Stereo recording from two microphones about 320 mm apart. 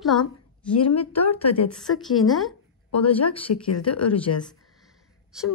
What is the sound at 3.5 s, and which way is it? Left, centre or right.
Speech, left.